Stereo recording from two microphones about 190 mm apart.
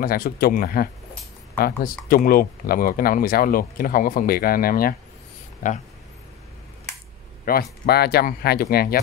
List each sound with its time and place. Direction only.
0.0 s speech: 50° left (ahead or behind)
2.0 s speech: 50° left (ahead or behind)
7.4 s speech: 55° left (ahead or behind)